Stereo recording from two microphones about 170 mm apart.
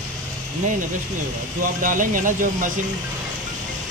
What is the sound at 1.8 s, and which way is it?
Speech, 50° right (ahead or behind).